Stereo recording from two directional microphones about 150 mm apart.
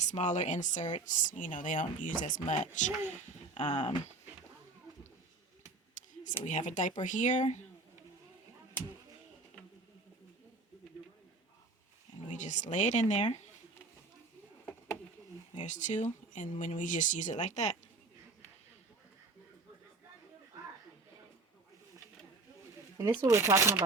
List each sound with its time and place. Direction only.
0.0 s speech: 50° left (ahead or behind)
5.9 s speech: 55° left (ahead or behind)
12.3 s speech: 55° left (ahead or behind)
15.6 s speech: 55° left (ahead or behind)
23.0 s speech: 20° right (ahead or behind)